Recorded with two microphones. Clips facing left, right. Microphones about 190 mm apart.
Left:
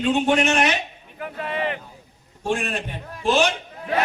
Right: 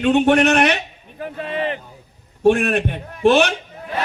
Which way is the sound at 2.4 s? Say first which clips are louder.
Right 10 dB; 65° right (ahead or behind).